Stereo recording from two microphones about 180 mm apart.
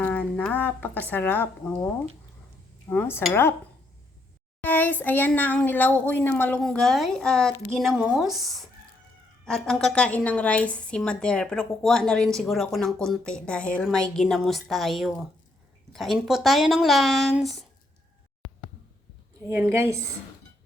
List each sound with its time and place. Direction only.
0.0 s a sound: 10° left (ahead or behind)
1.1 s a child's voice: 10° left (ahead or behind)
2.9 s a child's voice: 10° left (ahead or behind)
4.6 s a child's voice: 10° left (ahead or behind)
18.4 s a sound: centre (ahead or behind)
19.5 s a woman's voice: 15° right (ahead or behind)